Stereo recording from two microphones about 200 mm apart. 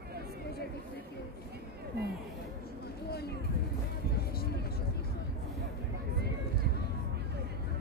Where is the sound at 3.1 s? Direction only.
50° left (ahead or behind).